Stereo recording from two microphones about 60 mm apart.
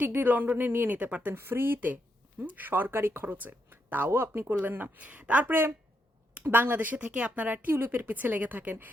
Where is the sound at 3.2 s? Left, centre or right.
Right.